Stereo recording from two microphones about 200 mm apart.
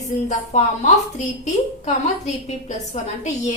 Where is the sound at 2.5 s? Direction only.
35° left (ahead or behind).